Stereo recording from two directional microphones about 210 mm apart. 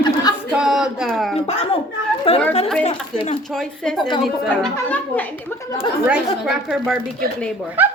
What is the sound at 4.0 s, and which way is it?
Speech, 20° left (ahead or behind).